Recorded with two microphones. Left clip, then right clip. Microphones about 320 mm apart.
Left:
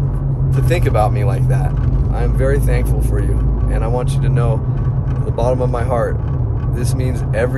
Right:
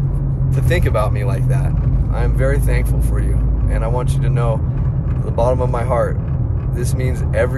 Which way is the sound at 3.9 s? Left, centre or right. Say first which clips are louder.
Left 2 dB; centre.